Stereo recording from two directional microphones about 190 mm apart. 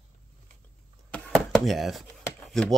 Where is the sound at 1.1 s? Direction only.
Centre (ahead or behind).